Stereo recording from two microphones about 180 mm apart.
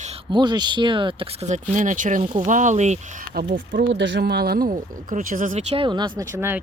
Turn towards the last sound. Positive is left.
turn(degrees=-10)  # may be behind; listen again after turning